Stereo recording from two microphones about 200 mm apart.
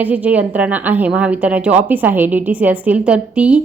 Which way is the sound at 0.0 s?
5° right (ahead or behind).